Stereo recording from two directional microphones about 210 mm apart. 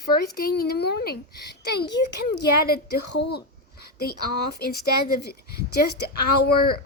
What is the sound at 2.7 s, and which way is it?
Speech, 50° left (ahead or behind).